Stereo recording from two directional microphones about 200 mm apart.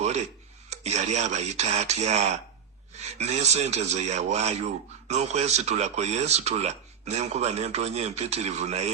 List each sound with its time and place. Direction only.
0.7 s speech: 35° right (ahead or behind)